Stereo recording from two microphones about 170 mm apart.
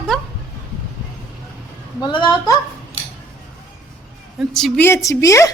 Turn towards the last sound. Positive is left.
turn(degrees=20)  # may be behind; listen again after turning